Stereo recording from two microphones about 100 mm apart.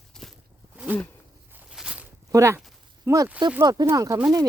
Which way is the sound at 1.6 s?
10° right (ahead or behind).